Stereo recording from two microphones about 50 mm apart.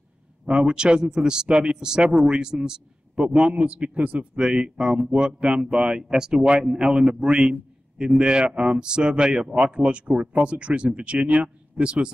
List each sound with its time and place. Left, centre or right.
0.5 s speech: right
4.4 s speech: centre